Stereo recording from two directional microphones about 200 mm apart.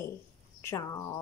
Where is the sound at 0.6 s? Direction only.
15° left (ahead or behind).